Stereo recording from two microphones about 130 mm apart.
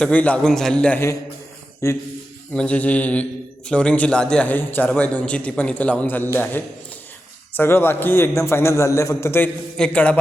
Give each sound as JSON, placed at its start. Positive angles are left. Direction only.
{"t": 0.0, "sound": "a man's voice", "side_deg": 10}
{"t": 1.8, "sound": "a man's voice", "side_deg": 20}
{"t": 2.5, "sound": "a man's voice", "side_deg": 10}
{"t": 9.7, "sound": "a man's voice", "side_deg": 10}